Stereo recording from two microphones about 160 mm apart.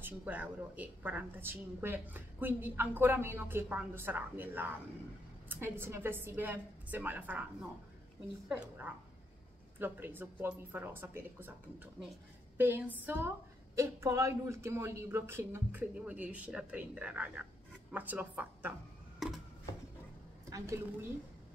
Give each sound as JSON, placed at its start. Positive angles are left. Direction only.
{"t": 0.0, "sound": "a woman's voice", "side_deg": -10}
{"t": 8.5, "sound": "a woman's voice", "side_deg": -10}
{"t": 19.1, "sound": "a sound", "side_deg": 0}
{"t": 20.4, "sound": "a woman's voice", "side_deg": -20}